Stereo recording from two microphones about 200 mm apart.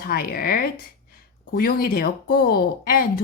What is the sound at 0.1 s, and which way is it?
Speech, 50° left (ahead or behind).